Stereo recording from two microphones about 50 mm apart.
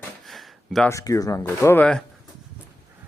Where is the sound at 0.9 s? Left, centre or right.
Left.